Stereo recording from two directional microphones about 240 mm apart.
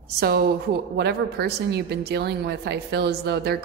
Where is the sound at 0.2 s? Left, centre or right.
Right.